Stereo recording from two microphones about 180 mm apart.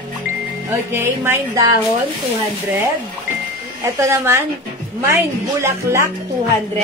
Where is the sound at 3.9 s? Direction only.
15° right (ahead or behind).